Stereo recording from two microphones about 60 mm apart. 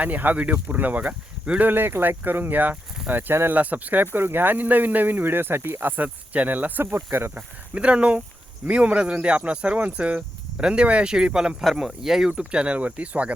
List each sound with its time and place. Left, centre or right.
0.0 s speech: right
3.5 s speech: right
6.3 s speech: right
6.9 s speech: right
7.7 s speech: centre
11.6 s speech: centre
12.3 s speech: centre